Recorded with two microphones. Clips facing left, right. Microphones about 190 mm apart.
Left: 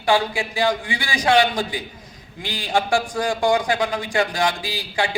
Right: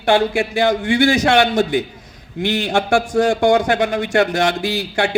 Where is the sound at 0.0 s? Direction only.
55° right (ahead or behind).